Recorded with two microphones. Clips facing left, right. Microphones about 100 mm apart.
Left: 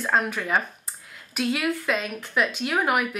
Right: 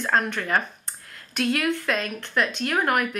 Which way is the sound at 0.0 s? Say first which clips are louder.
Even; 5° left (ahead or behind).